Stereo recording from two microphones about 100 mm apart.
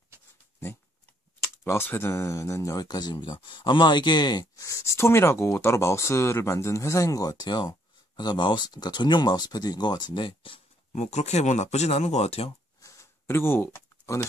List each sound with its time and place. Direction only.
1.4 s speech: 25° left (ahead or behind); by 10.6 s 55° left (ahead or behind)
11.9 s speech: 90° left
12.8 s a sound: 30° left (ahead or behind)